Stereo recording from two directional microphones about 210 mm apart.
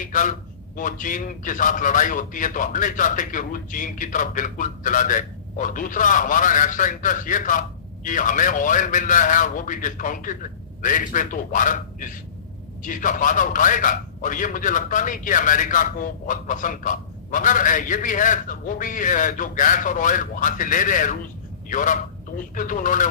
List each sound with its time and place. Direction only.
0.0 s a man's voice: 40° left (ahead or behind)